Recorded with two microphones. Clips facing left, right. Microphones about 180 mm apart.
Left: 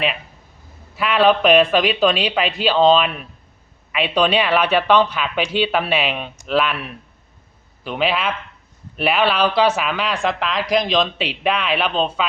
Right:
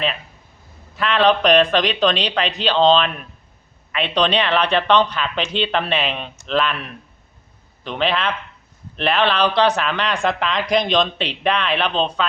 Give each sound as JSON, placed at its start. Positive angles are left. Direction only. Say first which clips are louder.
{"t": 0.9, "sound": "speech", "louder": "left 1 dB", "side_deg": 10}